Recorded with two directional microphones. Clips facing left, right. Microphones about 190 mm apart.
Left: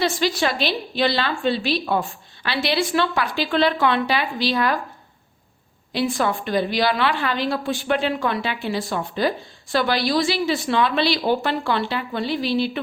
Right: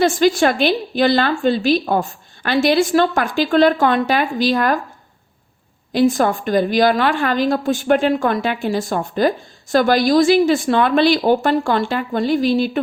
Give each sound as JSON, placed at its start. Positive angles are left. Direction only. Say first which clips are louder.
{"t": 0.0, "sound": "a woman's voice", "louder": "right 7 dB", "side_deg": -50}
{"t": 5.9, "sound": "a woman's voice", "louder": "right 7 dB", "side_deg": -45}